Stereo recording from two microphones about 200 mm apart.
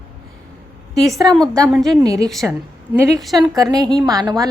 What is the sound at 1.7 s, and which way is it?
Speech, centre (ahead or behind).